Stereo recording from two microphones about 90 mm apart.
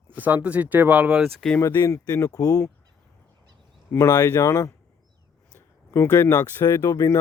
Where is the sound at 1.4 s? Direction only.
10° left (ahead or behind).